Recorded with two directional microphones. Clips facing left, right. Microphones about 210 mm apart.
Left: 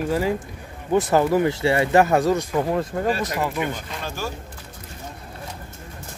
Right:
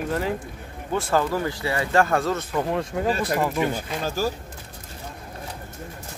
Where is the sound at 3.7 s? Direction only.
40° right (ahead or behind).